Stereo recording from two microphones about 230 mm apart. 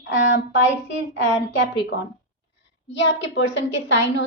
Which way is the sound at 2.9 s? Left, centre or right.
Left.